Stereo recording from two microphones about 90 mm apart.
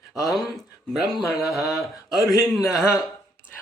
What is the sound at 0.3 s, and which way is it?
A man's voice, centre (ahead or behind).